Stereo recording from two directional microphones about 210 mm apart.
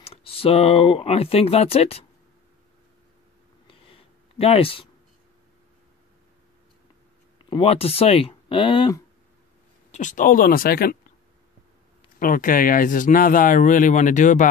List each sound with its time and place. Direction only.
0.0 s speech: 25° left (ahead or behind)
3.6 s a sound: 25° left (ahead or behind)
7.4 s speech: 25° left (ahead or behind)
9.8 s speech: 35° left (ahead or behind)
12.2 s speech: 40° left (ahead or behind)